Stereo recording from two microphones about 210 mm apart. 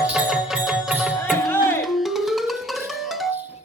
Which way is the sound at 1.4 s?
10° left (ahead or behind).